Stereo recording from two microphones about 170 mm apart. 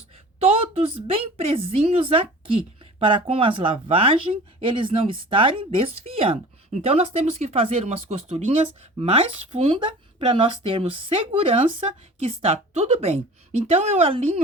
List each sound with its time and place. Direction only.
0.3 s a woman's voice: 35° right (ahead or behind)